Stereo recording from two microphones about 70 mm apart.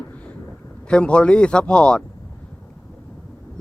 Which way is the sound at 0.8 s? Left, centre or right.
Centre.